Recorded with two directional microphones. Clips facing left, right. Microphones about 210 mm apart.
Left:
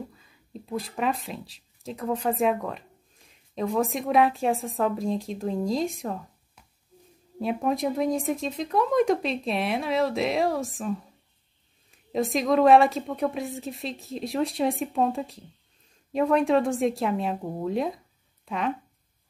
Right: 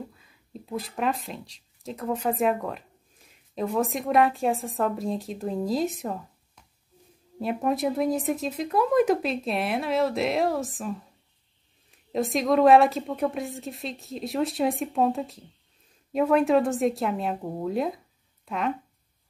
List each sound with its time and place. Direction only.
0.1 s speech: centre (ahead or behind)
7.3 s speech: centre (ahead or behind)